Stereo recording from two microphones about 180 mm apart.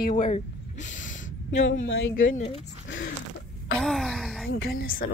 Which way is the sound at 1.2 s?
90° left.